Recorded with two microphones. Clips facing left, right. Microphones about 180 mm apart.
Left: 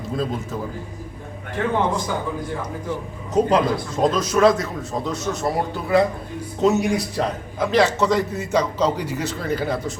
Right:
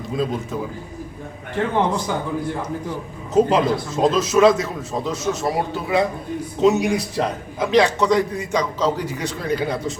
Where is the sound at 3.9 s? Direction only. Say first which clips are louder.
Right 1 dB; 25° right (ahead or behind).